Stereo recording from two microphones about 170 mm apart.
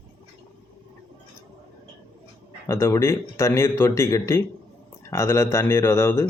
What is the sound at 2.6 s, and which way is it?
Speech, 15° left (ahead or behind).